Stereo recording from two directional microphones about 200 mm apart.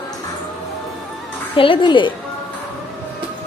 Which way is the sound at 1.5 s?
25° left (ahead or behind).